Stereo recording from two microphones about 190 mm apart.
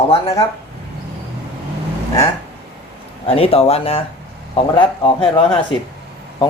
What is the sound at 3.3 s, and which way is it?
Speech, 30° left (ahead or behind).